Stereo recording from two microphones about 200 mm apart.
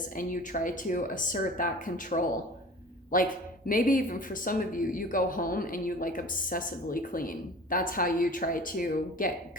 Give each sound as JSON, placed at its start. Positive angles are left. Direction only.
{"t": 0.2, "sound": "speech", "side_deg": 45}